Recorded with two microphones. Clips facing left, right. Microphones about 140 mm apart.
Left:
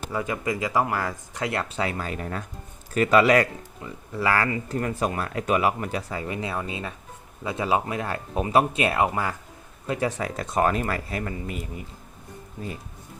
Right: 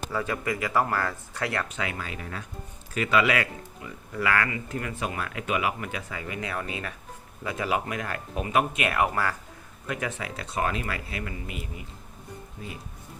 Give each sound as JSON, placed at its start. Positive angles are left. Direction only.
{"t": 0.1, "sound": "speech", "side_deg": 20}
{"t": 1.6, "sound": "speech", "side_deg": 35}
{"t": 9.8, "sound": "speech", "side_deg": 30}